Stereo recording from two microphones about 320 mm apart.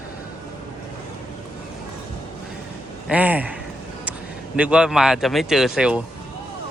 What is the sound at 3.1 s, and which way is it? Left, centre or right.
Speech, centre.